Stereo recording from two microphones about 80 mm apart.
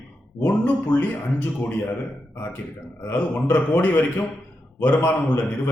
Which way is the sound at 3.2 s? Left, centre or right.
Centre.